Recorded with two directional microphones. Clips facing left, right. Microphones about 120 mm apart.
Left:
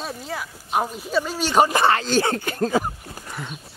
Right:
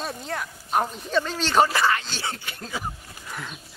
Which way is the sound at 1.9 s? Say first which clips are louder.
Left 9 dB; 45° left (ahead or behind).